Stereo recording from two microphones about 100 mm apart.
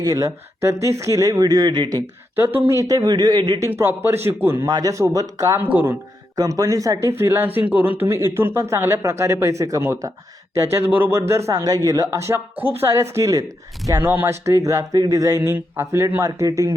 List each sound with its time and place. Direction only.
0.0 s speech: 35° right (ahead or behind)
2.3 s speech: 20° right (ahead or behind)
2.6 s speech: 35° right (ahead or behind)
3.7 s speech: 25° right (ahead or behind)
4.6 s speech: 35° right (ahead or behind)
5.7 s speech: 20° right (ahead or behind)
6.3 s speech: 40° right (ahead or behind)
7.2 s speech: 25° right (ahead or behind)
12.3 s speech: 20° right (ahead or behind)
14.0 s speech: 20° right (ahead or behind)
15.5 s speech: 25° right (ahead or behind)